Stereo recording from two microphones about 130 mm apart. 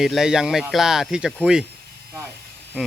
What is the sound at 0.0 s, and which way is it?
Speech, 5° right (ahead or behind).